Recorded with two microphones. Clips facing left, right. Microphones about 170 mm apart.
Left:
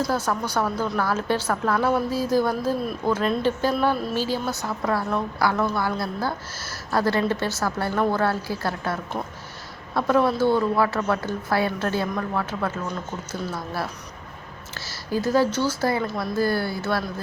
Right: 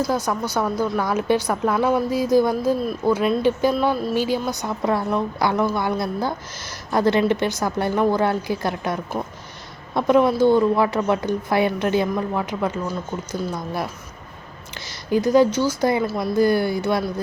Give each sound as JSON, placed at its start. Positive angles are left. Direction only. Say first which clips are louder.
{"t": 0.1, "sound": "a woman's voice", "louder": "right 2 dB", "side_deg": -15}
{"t": 14.8, "sound": "speech", "louder": "right 5 dB", "side_deg": -15}